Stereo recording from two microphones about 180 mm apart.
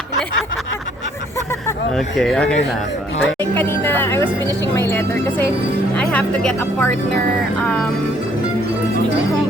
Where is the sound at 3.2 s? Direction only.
5° left (ahead or behind).